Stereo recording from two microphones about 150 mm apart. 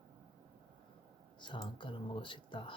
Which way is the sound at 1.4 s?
35° left (ahead or behind).